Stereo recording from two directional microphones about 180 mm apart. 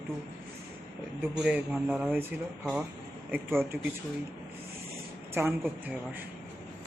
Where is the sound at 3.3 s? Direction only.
10° right (ahead or behind).